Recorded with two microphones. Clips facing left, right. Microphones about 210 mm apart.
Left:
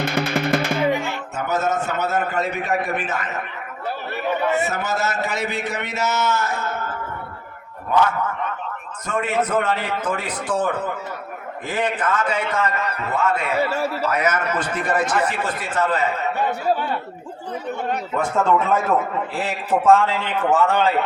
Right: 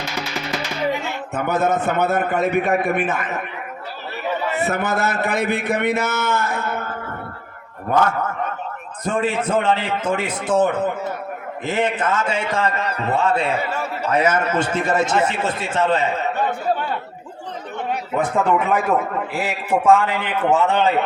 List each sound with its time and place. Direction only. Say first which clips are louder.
0.0 s music: left 6 dB; 55° left (ahead or behind)
1.4 s a man's voice: right 3 dB; 55° right (ahead or behind)
4.6 s a man's voice: right 3 dB; 55° right (ahead or behind)
7.9 s speech: right 1 dB; 50° right (ahead or behind)
9.0 s a man's voice: right 2 dB; 30° right (ahead or behind)
18.2 s a man's voice: right 1 dB; 15° right (ahead or behind)